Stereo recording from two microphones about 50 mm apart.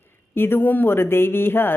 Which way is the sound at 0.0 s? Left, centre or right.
Left.